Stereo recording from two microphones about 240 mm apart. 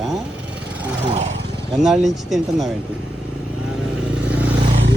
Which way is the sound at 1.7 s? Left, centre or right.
Centre.